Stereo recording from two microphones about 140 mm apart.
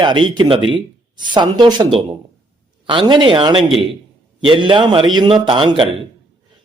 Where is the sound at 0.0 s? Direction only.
35° right (ahead or behind).